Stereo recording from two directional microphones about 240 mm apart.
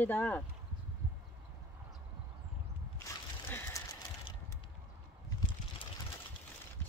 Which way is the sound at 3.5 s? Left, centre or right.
Centre.